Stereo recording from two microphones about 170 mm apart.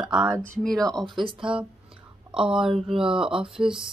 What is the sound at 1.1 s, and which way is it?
Speech, 30° right (ahead or behind).